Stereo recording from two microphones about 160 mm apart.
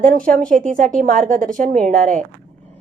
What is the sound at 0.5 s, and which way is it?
Speech, 55° right (ahead or behind).